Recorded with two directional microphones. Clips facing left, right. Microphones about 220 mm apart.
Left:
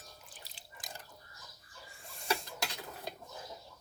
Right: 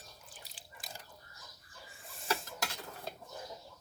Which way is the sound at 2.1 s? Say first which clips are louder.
Left 1 dB; centre (ahead or behind).